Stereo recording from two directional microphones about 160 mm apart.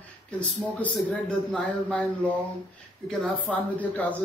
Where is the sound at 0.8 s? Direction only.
10° left (ahead or behind).